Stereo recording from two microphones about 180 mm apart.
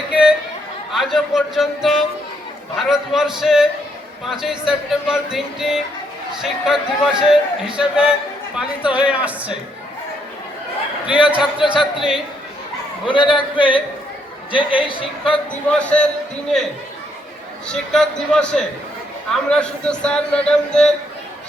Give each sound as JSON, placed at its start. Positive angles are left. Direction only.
{"t": 0.1, "sound": "chatter", "side_deg": -5}
{"t": 0.9, "sound": "a man's voice", "side_deg": 0}
{"t": 11.0, "sound": "a man's voice", "side_deg": 30}
{"t": 11.3, "sound": "a man's voice", "side_deg": -5}
{"t": 13.1, "sound": "a man's voice", "side_deg": 25}
{"t": 15.7, "sound": "speech", "side_deg": 5}
{"t": 17.7, "sound": "a man's voice", "side_deg": 5}